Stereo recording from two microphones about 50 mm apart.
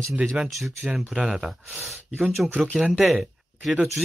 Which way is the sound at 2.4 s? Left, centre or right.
Right.